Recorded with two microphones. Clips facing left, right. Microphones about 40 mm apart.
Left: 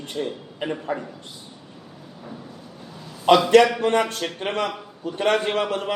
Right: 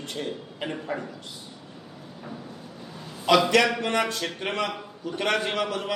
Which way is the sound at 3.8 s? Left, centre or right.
Left.